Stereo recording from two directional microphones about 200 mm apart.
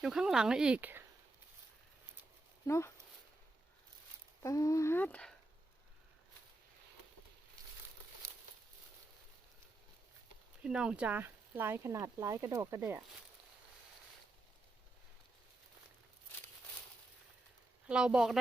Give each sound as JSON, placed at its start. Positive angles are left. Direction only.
{"t": 0.0, "sound": "speech", "side_deg": 0}
{"t": 2.6, "sound": "speech", "side_deg": 15}
{"t": 4.4, "sound": "speech", "side_deg": 15}
{"t": 7.6, "sound": "crumpling", "side_deg": -20}
{"t": 10.6, "sound": "speech", "side_deg": -5}
{"t": 17.8, "sound": "speech", "side_deg": -5}